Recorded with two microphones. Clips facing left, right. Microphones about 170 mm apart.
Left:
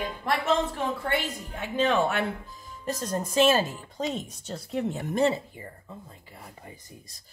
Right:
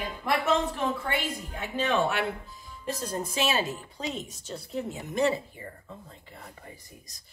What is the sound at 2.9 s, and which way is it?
Speech, 45° left (ahead or behind).